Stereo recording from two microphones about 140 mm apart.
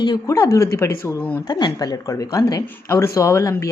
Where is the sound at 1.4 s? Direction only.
25° left (ahead or behind).